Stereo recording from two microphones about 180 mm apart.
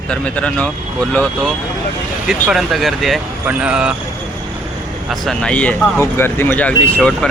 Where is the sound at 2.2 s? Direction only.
5° right (ahead or behind).